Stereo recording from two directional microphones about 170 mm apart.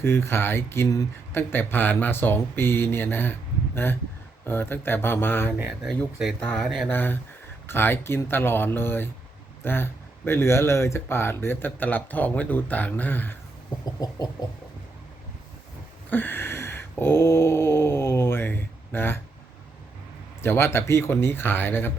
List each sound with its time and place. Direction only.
0.0 s speech: 15° left (ahead or behind)
5.5 s speech: 10° right (ahead or behind)
5.9 s speech: centre (ahead or behind)
6.9 s speech: 10° left (ahead or behind)
14.0 s a sound: 25° left (ahead or behind)
16.0 s a sound: 10° left (ahead or behind)
20.4 s speech: 15° left (ahead or behind)